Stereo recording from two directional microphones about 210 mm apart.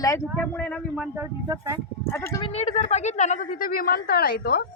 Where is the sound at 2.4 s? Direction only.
30° left (ahead or behind).